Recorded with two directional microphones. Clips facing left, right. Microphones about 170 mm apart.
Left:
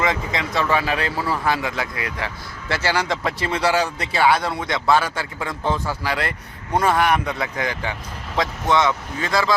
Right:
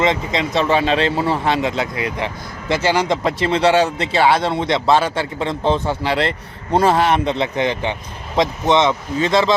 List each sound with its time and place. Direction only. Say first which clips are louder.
0.0 s speech: right 5 dB; 20° right (ahead or behind)